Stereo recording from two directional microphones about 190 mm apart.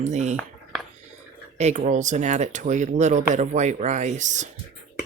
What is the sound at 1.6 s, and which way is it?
Speech, 35° right (ahead or behind).